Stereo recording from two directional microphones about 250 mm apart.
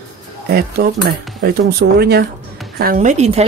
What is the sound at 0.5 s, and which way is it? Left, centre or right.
A woman's voice, right.